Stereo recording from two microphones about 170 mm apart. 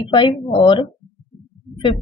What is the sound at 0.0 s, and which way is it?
A woman's voice, 30° left (ahead or behind).